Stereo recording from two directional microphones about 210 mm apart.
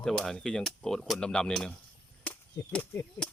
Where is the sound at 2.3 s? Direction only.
5° left (ahead or behind).